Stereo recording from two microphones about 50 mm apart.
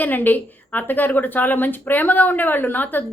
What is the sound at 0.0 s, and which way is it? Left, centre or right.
Speech, left.